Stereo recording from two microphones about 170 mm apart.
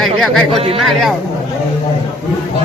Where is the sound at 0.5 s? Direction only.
35° right (ahead or behind).